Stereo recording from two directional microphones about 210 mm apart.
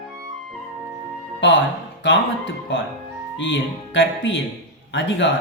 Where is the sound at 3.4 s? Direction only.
60° left (ahead or behind).